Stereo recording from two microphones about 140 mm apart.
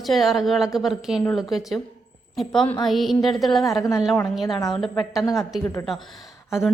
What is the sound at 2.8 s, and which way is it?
A woman's voice, centre (ahead or behind).